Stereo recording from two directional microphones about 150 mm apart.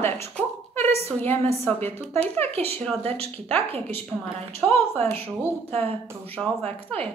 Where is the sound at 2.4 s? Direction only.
40° right (ahead or behind).